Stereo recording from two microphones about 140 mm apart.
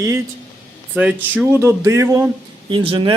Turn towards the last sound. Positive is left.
turn(degrees=-40)  # may be behind; listen again after turning